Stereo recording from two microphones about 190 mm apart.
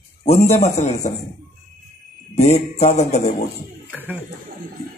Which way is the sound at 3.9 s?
10° right (ahead or behind).